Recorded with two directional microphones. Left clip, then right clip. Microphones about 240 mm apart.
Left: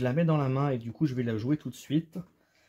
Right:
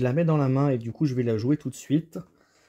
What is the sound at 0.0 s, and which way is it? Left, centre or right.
Speech, right.